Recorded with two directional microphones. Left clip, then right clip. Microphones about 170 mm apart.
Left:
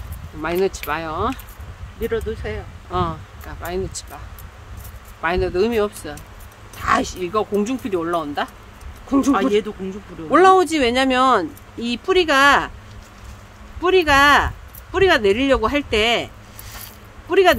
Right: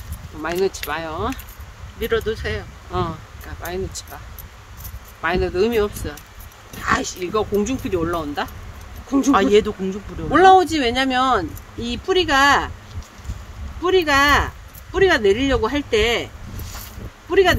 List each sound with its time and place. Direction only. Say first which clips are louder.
0.4 s speech: left 1 dB; 30° left (ahead or behind)
2.0 s speech: right 2 dB; 45° right (ahead or behind)
2.9 s speech: left 2 dB; 30° left (ahead or behind)
5.2 s speech: even; 30° left (ahead or behind)
9.3 s speech: right 6 dB; 35° right (ahead or behind)
10.3 s speech: right 1 dB; 45° left (ahead or behind)
13.8 s speech: left 2 dB; 50° left (ahead or behind)
17.3 s speech: left 1 dB; 50° left (ahead or behind)